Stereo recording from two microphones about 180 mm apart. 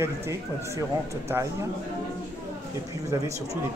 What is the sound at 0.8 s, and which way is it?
Speech, 15° right (ahead or behind).